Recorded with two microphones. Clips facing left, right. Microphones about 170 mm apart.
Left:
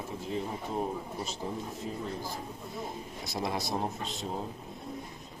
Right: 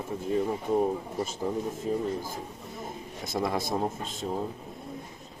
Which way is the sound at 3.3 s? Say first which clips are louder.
Right 4 dB; 50° right (ahead or behind).